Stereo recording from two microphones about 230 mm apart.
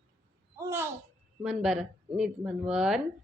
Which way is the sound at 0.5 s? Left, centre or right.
Centre.